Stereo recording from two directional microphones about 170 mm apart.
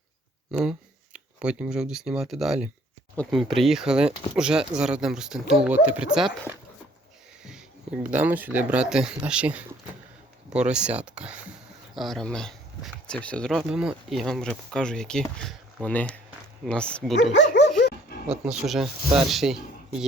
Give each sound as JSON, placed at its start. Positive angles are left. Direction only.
{"t": 0.6, "sound": "speech", "side_deg": -5}
{"t": 8.1, "sound": "speech", "side_deg": -10}
{"t": 10.5, "sound": "a sound", "side_deg": -5}
{"t": 11.9, "sound": "speech", "side_deg": 0}
{"t": 17.3, "sound": "dog", "side_deg": 90}
{"t": 18.4, "sound": "speech", "side_deg": -5}